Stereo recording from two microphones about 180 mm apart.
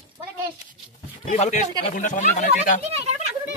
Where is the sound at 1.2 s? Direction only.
40° left (ahead or behind).